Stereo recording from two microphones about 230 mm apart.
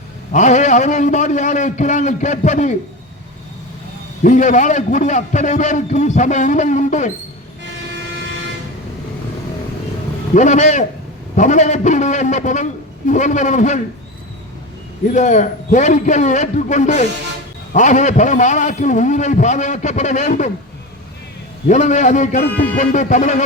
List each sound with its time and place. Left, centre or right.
0.3 s a man's voice: left
4.2 s a man's voice: left
10.3 s a man's voice: left
15.1 s a man's voice: left
21.7 s a man's voice: left